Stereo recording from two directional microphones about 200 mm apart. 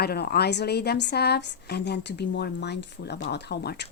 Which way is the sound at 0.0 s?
50° left (ahead or behind).